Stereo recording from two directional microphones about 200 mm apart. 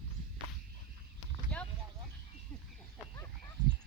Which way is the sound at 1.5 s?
5° left (ahead or behind).